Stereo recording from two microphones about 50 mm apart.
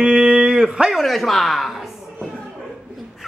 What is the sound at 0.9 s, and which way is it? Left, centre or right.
Speech, centre.